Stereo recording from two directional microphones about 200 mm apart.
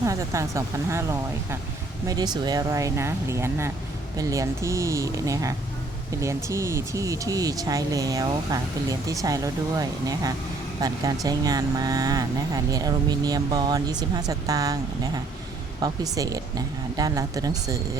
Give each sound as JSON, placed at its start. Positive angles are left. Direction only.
{"t": 0.0, "sound": "speech", "side_deg": -15}
{"t": 2.0, "sound": "speech", "side_deg": -20}